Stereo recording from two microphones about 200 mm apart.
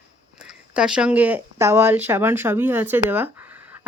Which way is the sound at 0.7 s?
5° right (ahead or behind).